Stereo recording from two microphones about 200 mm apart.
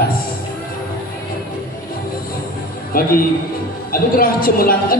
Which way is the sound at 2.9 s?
45° left (ahead or behind).